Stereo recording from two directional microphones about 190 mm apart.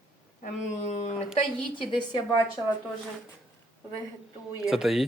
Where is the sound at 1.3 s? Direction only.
25° left (ahead or behind).